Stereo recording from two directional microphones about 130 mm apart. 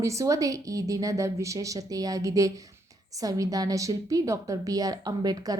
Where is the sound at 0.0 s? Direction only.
25° right (ahead or behind).